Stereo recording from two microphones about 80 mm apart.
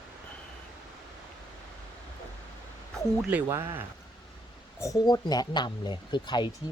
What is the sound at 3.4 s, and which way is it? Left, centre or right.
Speech, right.